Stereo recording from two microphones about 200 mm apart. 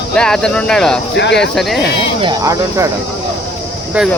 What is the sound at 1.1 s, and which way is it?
Speech, 60° left (ahead or behind).